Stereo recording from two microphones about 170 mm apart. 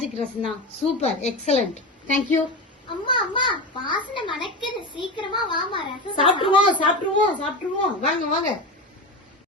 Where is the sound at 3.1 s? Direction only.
30° left (ahead or behind).